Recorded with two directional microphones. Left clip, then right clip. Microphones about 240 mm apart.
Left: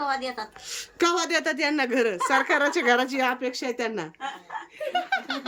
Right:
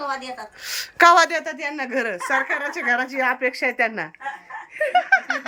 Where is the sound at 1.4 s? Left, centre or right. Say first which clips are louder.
Left 3 dB; centre.